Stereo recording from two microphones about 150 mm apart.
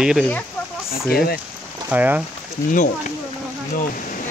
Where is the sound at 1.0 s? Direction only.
90° left.